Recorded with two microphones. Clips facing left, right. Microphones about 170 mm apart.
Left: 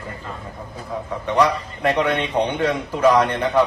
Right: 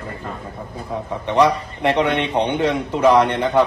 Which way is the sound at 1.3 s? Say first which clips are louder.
Right 2 dB; 25° right (ahead or behind).